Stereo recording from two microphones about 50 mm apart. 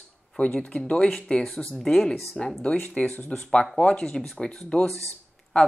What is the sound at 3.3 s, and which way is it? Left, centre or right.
Speech, centre.